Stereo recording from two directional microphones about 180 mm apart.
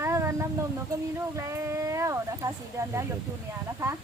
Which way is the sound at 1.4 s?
15° right (ahead or behind).